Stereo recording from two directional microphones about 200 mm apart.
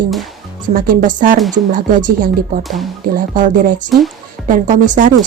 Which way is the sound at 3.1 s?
45° right (ahead or behind).